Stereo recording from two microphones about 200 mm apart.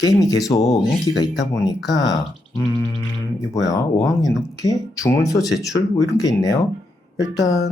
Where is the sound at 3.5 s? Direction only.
15° left (ahead or behind).